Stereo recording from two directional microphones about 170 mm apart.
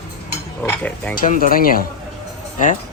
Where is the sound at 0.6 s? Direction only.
10° left (ahead or behind).